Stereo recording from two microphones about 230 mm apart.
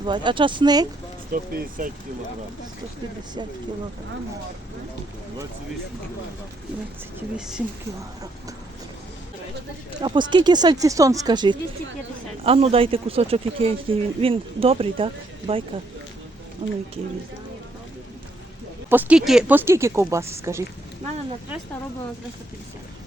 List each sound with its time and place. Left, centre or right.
0.0 s speech: centre
1.3 s speech: right
7.3 s speech: centre
10.0 s speech: centre
18.9 s speech: centre